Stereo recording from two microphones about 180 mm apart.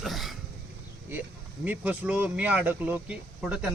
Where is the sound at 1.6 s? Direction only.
10° right (ahead or behind).